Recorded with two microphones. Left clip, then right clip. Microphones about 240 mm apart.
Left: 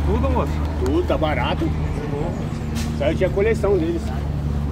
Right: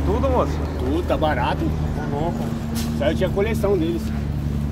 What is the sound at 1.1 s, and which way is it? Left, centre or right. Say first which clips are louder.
Speech: right 1 dB; right.